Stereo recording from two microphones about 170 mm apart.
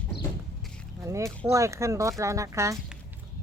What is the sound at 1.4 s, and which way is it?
Speech, 15° right (ahead or behind).